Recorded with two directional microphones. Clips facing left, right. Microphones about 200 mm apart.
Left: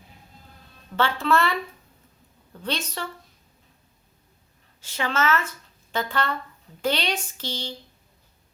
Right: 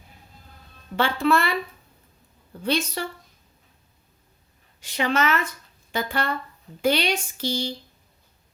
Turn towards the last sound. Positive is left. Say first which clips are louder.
# right 6 dB
turn(degrees=-10)  # may be behind; listen again after turning